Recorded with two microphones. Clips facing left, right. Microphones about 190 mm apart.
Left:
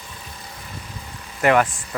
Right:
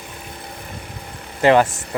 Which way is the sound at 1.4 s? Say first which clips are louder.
Right 3 dB; 30° right (ahead or behind).